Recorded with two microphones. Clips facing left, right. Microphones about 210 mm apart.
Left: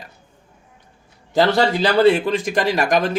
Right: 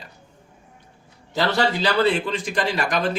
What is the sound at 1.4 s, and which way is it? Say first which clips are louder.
A man's voice: left 5 dB; 45° left (ahead or behind).